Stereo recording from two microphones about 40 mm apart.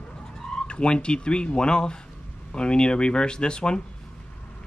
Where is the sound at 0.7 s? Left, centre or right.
Left.